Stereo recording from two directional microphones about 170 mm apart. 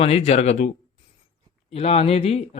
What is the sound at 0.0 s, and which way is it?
Speech, 35° left (ahead or behind).